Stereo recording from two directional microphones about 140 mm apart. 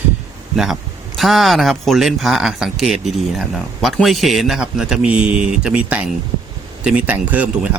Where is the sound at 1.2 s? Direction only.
Centre (ahead or behind).